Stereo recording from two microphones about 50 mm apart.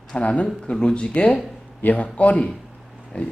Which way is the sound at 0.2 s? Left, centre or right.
Left.